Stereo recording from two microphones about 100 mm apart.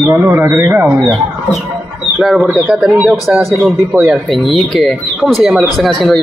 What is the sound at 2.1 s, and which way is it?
Speech, 5° right (ahead or behind).